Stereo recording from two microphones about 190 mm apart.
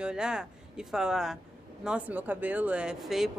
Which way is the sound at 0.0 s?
5° right (ahead or behind).